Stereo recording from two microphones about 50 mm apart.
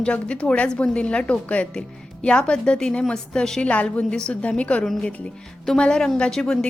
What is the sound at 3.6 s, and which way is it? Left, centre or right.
A woman's voice, left.